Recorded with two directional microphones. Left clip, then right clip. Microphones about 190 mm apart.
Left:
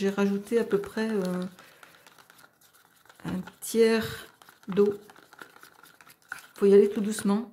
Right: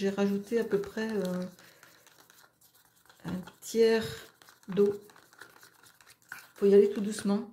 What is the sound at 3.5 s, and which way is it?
Speech, 15° left (ahead or behind).